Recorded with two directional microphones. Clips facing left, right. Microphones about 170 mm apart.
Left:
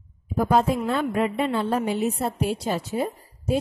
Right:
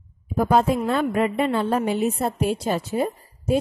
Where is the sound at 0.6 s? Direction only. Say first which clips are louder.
Right 2 dB; 55° right (ahead or behind).